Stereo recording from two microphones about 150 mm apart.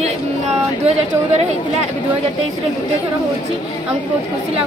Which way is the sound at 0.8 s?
45° right (ahead or behind).